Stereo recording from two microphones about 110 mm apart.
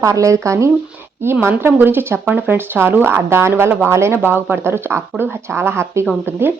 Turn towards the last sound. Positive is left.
turn(degrees=-20)  # may be behind; listen again after turning